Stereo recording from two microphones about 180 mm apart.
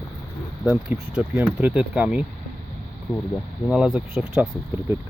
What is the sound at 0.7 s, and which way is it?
Speech, 10° right (ahead or behind).